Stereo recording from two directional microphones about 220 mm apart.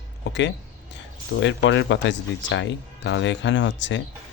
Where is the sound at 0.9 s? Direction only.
55° left (ahead or behind).